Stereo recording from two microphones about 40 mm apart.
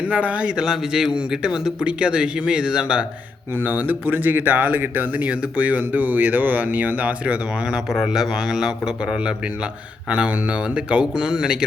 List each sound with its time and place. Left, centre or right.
0.0 s a man's voice: right
0.5 s a man's voice: centre
3.6 s speech: right
5.2 s speech: right
7.9 s a man's voice: centre
10.1 s speech: right